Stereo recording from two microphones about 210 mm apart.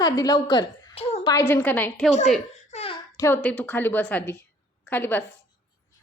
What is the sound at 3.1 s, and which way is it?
A child's voice, 10° left (ahead or behind).